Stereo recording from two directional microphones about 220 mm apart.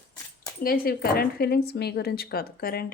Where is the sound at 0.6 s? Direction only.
40° left (ahead or behind).